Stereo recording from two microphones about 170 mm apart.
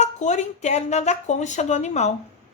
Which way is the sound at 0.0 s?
45° left (ahead or behind).